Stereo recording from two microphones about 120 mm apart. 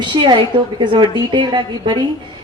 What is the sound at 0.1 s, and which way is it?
Speech, 40° right (ahead or behind).